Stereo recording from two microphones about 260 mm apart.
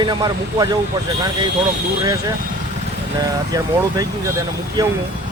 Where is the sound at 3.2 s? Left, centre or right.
Centre.